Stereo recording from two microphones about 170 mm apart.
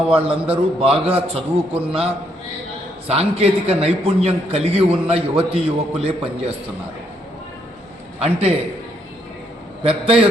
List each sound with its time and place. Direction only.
0.1 s a man's voice: 35° right (ahead or behind)
1.7 s a man's voice: 5° right (ahead or behind)
3.1 s a man's voice: 35° right (ahead or behind)
8.2 s a man's voice: 35° right (ahead or behind)
9.8 s a man's voice: 35° right (ahead or behind)